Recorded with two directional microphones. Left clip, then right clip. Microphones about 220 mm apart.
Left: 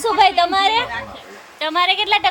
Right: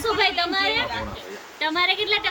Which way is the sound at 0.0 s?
15° left (ahead or behind).